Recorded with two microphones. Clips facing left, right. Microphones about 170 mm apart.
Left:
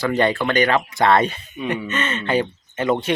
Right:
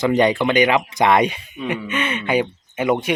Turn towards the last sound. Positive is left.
turn(degrees=-10)  # may be behind; listen again after turning